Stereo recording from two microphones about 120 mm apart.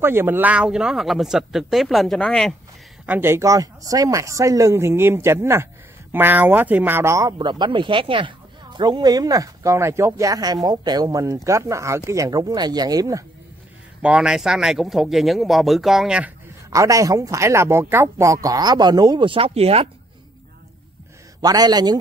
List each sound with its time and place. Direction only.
0.0 s speech: 20° right (ahead or behind); by 2.5 s 5° left (ahead or behind)
3.1 s speech: 20° right (ahead or behind)
7.3 s speech: 40° right (ahead or behind)
14.0 s speech: 5° right (ahead or behind)
16.7 s speech: 30° right (ahead or behind); by 19.9 s 55° right (ahead or behind)
21.4 s speech: 35° right (ahead or behind)